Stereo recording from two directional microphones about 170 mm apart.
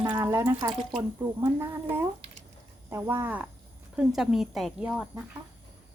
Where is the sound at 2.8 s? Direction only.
15° right (ahead or behind).